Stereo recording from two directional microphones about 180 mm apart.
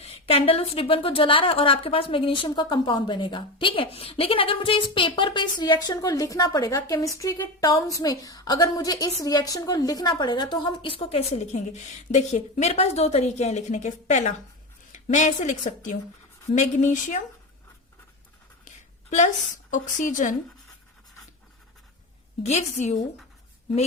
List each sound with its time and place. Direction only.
0.0 s a woman's voice: 30° left (ahead or behind)
19.7 s speech: 45° left (ahead or behind)
22.4 s a woman's voice: 40° left (ahead or behind)